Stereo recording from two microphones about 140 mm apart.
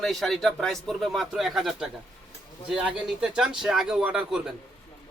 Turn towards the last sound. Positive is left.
turn(degrees=-5)  # may be behind; listen again after turning